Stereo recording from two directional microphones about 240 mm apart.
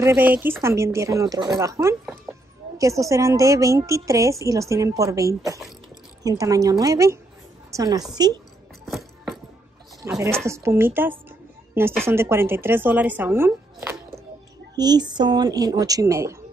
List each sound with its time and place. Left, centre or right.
0.0 s a woman's voice: centre
8.8 s music: centre
10.0 s a woman's voice: centre
14.8 s a woman's voice: centre